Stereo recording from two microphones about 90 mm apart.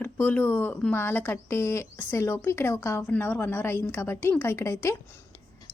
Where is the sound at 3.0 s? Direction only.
20° left (ahead or behind).